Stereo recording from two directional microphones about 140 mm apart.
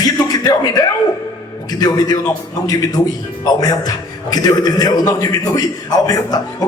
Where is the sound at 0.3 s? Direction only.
30° left (ahead or behind).